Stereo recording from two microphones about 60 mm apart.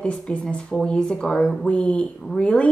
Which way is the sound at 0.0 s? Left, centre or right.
Centre.